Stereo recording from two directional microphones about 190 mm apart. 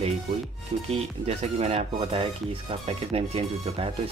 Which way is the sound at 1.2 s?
35° right (ahead or behind).